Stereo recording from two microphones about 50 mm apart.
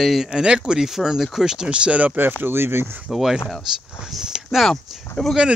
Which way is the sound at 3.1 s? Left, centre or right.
Centre.